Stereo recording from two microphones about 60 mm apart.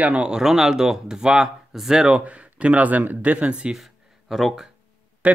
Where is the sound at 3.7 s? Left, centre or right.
Centre.